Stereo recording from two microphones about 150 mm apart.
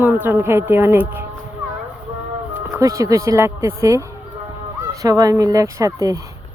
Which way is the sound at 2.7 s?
20° right (ahead or behind).